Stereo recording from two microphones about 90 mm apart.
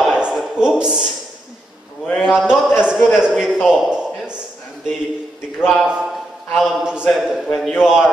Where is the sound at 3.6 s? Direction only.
5° right (ahead or behind).